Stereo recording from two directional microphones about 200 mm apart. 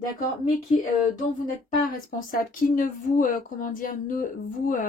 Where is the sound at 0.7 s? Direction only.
40° left (ahead or behind).